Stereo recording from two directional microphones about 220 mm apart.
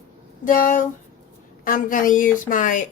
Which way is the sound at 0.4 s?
40° left (ahead or behind).